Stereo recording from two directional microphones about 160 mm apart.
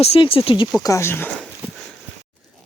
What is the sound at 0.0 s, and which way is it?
Speech, 35° left (ahead or behind).